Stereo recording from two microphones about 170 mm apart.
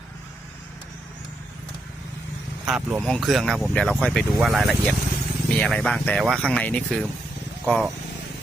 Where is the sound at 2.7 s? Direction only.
10° right (ahead or behind).